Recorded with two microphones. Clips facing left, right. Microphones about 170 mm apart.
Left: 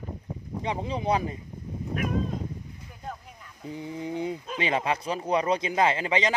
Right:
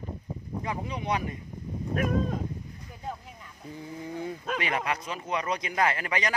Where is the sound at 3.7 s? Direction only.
20° left (ahead or behind).